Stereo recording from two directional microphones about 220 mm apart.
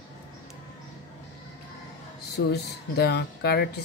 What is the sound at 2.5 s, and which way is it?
Speech, 50° left (ahead or behind).